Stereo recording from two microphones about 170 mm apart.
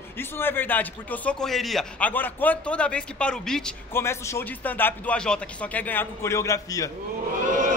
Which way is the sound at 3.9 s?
15° left (ahead or behind).